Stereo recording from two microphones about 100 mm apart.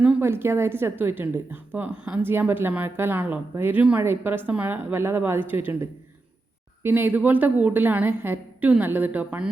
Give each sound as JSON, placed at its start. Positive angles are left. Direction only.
{"t": 0.2, "sound": "a woman's voice", "side_deg": -25}